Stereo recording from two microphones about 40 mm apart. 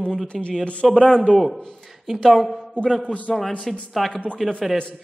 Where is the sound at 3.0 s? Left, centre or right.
Left.